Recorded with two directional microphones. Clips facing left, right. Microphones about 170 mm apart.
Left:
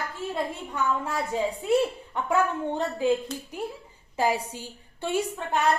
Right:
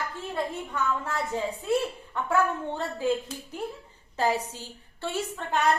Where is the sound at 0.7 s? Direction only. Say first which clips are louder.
Left 2 dB; 15° left (ahead or behind).